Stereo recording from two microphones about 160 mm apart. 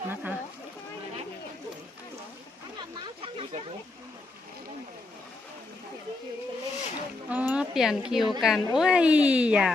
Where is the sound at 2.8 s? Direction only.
30° right (ahead or behind).